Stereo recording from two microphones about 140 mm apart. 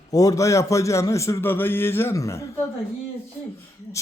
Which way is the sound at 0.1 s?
25° left (ahead or behind).